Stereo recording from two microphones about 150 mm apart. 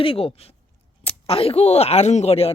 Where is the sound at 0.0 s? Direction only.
35° left (ahead or behind).